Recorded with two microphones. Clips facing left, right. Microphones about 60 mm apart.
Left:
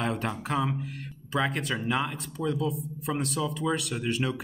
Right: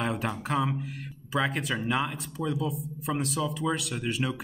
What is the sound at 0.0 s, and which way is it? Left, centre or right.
A man's voice, centre.